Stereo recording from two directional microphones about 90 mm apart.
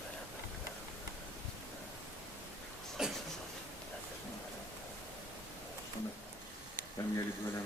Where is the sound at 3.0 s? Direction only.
5° right (ahead or behind).